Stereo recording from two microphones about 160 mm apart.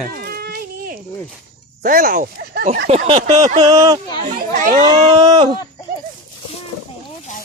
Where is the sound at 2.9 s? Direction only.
40° right (ahead or behind).